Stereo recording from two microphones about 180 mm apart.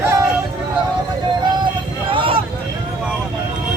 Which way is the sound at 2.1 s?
30° right (ahead or behind).